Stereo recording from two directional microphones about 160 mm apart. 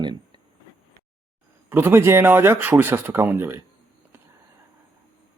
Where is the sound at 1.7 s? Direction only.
15° right (ahead or behind).